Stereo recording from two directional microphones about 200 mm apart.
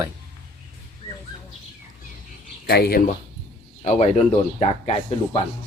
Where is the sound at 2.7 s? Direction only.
50° left (ahead or behind).